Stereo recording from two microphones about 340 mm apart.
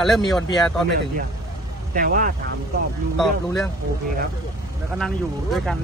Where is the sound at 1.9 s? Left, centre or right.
Right.